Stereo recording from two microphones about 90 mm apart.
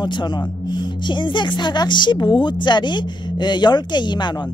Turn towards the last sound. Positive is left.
turn(degrees=55)  # may be behind; listen again after turning